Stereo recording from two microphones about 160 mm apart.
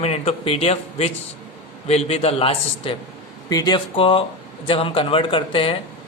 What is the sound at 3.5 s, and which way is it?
A man's voice, 25° left (ahead or behind).